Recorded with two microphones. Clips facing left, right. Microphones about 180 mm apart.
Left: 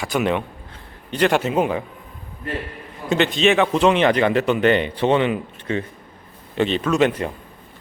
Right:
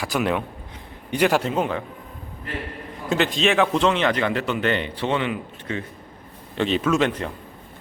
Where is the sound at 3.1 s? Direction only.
Centre (ahead or behind).